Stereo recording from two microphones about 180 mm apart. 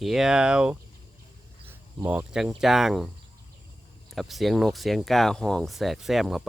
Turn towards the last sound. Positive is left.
turn(degrees=0)  # may be behind; listen again after turning